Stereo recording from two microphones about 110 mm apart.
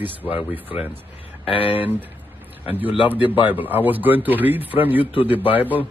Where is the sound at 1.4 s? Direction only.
55° left (ahead or behind).